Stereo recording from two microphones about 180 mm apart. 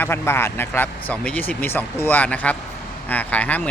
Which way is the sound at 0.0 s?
10° left (ahead or behind).